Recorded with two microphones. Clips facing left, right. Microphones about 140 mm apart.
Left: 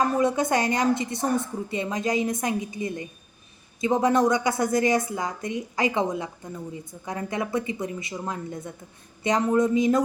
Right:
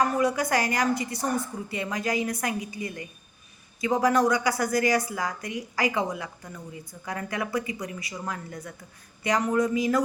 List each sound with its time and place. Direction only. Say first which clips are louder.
0.0 s a woman's voice: left 2 dB; 25° left (ahead or behind)